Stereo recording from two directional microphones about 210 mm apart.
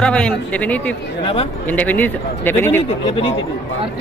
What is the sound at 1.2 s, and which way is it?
Speech, 30° left (ahead or behind).